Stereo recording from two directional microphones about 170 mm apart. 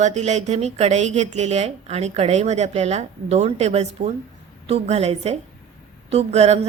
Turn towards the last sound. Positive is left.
turn(degrees=-40)  # may be behind; listen again after turning